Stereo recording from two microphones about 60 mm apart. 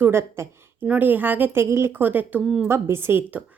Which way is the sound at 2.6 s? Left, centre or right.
Right.